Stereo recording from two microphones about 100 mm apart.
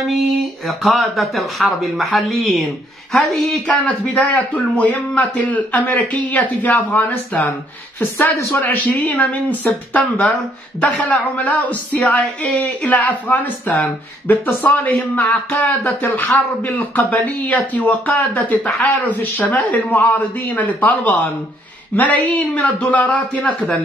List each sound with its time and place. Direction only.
0.7 s speech: centre (ahead or behind)
4.1 s a man's voice: 15° left (ahead or behind)